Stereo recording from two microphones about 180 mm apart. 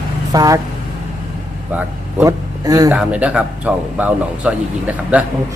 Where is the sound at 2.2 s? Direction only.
20° right (ahead or behind).